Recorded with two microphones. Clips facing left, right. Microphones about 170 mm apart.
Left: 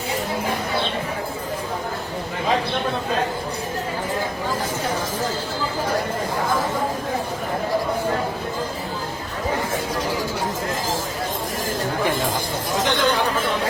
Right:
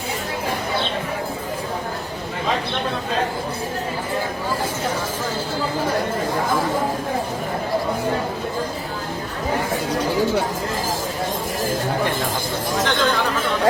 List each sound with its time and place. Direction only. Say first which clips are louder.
12.8 s chatter: even; 15° left (ahead or behind)